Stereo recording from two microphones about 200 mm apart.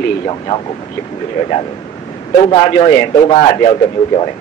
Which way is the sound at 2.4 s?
25° left (ahead or behind).